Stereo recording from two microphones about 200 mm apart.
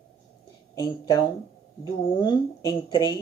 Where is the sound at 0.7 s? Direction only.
20° left (ahead or behind).